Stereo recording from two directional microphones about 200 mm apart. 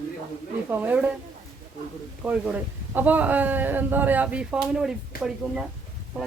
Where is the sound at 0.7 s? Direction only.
10° right (ahead or behind).